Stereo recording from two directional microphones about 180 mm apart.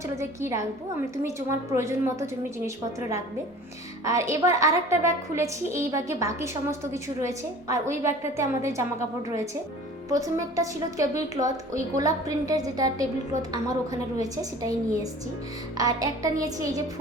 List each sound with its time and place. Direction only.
0.2 s a woman's voice: 15° right (ahead or behind)
10.1 s a woman's voice: 20° right (ahead or behind)